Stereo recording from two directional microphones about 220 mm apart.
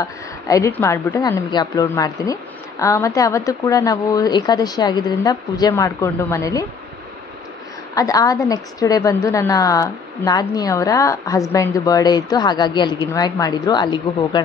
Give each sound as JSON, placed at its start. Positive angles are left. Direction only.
{"t": 0.0, "sound": "a woman's voice", "side_deg": 15}
{"t": 7.9, "sound": "a woman's voice", "side_deg": 15}